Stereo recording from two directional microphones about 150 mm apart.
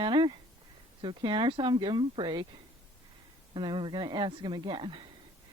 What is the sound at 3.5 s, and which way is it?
Speech, 30° right (ahead or behind).